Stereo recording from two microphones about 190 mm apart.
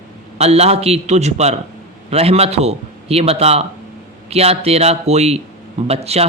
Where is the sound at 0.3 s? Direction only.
35° right (ahead or behind).